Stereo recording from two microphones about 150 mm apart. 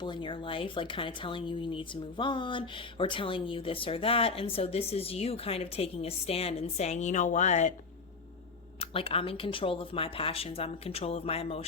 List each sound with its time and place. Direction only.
0.0 s speech: 30° left (ahead or behind); by 7.7 s 50° left (ahead or behind)
8.8 s speech: 40° left (ahead or behind)